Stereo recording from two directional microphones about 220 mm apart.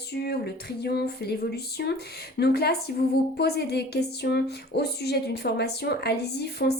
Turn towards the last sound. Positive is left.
turn(degrees=50)  # may be behind; listen again after turning